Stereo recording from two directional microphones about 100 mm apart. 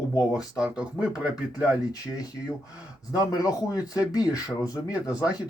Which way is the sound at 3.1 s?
40° left (ahead or behind).